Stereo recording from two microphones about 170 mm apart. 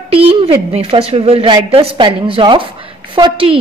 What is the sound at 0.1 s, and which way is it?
A woman's voice, 35° right (ahead or behind).